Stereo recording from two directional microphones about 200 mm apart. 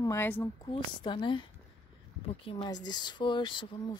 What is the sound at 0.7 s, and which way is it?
Speech, 25° left (ahead or behind).